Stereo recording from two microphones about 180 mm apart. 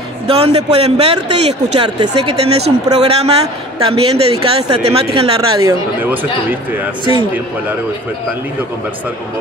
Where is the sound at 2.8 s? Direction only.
35° right (ahead or behind).